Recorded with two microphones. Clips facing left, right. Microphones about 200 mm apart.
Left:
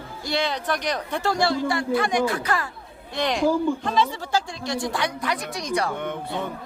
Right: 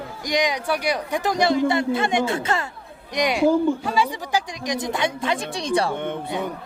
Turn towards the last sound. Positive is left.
turn(degrees=-20)  # may be behind; listen again after turning